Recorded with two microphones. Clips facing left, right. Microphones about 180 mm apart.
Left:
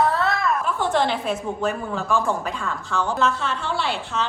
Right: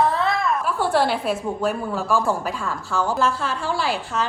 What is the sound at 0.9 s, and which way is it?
A woman's voice, 5° right (ahead or behind).